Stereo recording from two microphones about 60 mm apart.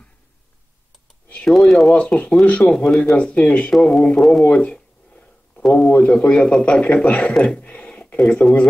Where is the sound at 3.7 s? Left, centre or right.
Centre.